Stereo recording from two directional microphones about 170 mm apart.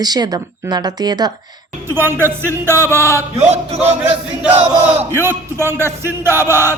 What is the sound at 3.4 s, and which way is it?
Speech, 40° right (ahead or behind).